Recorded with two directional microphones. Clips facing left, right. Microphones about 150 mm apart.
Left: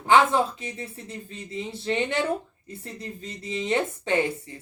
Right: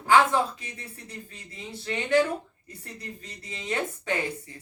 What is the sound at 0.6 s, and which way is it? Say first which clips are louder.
Speech: left 7 dB; 25° left (ahead or behind).